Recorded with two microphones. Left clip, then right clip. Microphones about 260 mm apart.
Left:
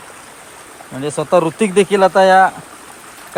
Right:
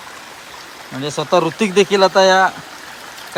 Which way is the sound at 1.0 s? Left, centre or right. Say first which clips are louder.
Left 2 dB; centre.